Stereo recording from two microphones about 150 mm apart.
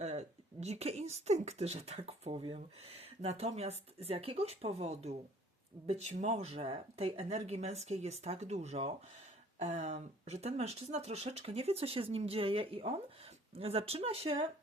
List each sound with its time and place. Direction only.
0.0 s speech: 45° right (ahead or behind)